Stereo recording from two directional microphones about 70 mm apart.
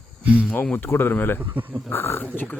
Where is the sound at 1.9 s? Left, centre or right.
Left.